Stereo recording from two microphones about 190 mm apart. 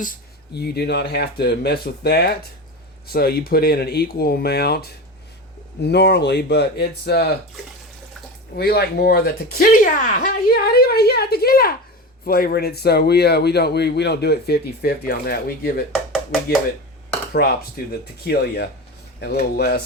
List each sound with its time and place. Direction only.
0.0 s speech: 50° left (ahead or behind)
8.5 s speech: 55° left (ahead or behind)
17.3 s speech: 55° left (ahead or behind)